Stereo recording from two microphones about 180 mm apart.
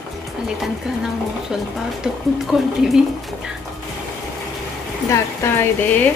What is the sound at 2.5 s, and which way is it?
Speech, 5° right (ahead or behind).